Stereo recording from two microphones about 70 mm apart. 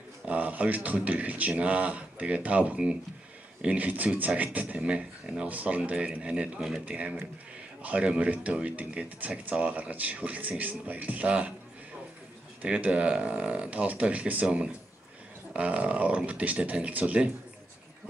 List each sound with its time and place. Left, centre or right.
0.2 s speech: right
12.6 s speech: centre